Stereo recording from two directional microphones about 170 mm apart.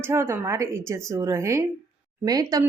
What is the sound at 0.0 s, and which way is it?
Speech, 15° right (ahead or behind).